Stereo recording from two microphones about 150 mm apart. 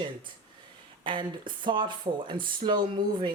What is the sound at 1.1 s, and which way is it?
Speech, 35° right (ahead or behind).